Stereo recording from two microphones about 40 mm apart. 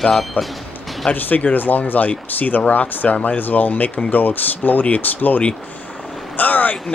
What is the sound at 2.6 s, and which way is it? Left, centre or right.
Speech, left.